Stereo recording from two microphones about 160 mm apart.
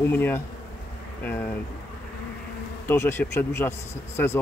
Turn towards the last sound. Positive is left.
turn(degrees=15)  # may be behind; listen again after turning